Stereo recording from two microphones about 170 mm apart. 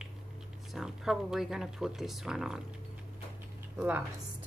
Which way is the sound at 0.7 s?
Centre (ahead or behind).